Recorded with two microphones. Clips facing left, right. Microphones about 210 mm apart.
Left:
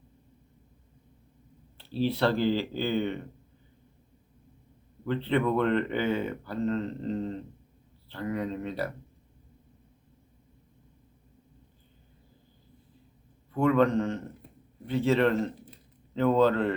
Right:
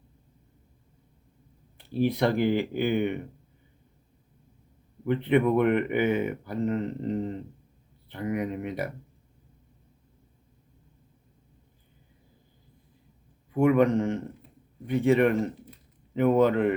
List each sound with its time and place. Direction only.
1.8 s speech: 15° right (ahead or behind)
5.0 s speech: 15° right (ahead or behind)
13.5 s speech: 15° right (ahead or behind)